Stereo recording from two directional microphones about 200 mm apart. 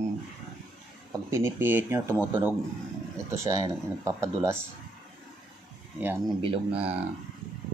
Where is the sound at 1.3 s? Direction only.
10° right (ahead or behind).